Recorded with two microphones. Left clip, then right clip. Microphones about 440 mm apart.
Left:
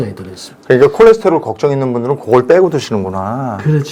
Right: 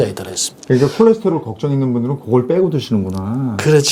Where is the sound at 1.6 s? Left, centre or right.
Left.